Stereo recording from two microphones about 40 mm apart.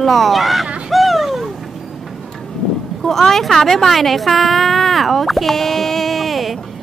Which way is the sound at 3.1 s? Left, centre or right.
Centre.